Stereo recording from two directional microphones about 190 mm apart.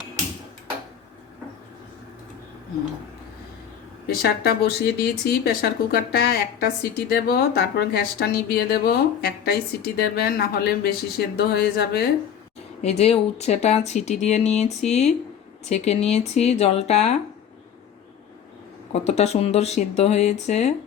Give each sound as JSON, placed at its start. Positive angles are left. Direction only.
{"t": 4.0, "sound": "speech", "side_deg": 55}
{"t": 12.8, "sound": "speech", "side_deg": 35}
{"t": 18.9, "sound": "speech", "side_deg": 35}